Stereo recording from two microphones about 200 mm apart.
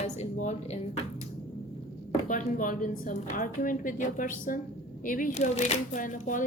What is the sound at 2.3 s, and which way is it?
Speech, 40° left (ahead or behind).